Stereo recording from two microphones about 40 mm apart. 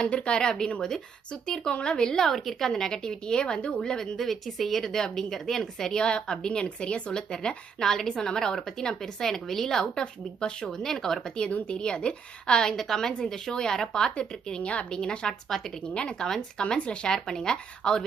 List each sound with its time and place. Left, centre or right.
0.0 s speech: left
0.3 s a woman's voice: centre
3.8 s a woman's voice: centre
6.0 s a woman's voice: left
10.0 s speech: left
10.8 s a woman's voice: centre
11.7 s speech: left
12.7 s a woman's voice: centre
15.3 s a woman's voice: centre
16.0 s speech: left
17.1 s a woman's voice: centre